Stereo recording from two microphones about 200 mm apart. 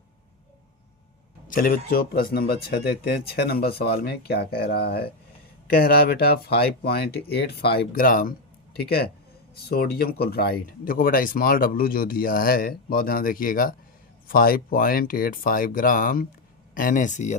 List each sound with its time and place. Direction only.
1.5 s speech: 45° left (ahead or behind)